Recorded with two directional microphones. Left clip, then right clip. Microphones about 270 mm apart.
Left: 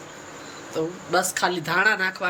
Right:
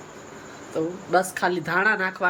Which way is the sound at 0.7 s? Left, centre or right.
Centre.